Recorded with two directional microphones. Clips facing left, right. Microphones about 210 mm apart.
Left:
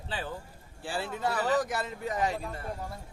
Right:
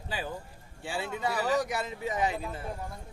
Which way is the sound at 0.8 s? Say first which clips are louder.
Even; centre (ahead or behind).